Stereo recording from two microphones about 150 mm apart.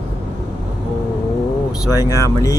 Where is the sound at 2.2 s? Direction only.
20° left (ahead or behind).